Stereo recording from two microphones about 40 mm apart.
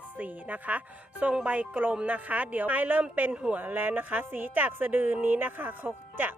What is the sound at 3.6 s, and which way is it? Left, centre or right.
A woman's voice, right.